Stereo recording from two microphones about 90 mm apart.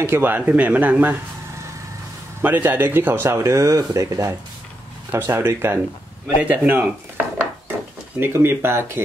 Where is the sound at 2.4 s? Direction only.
20° right (ahead or behind).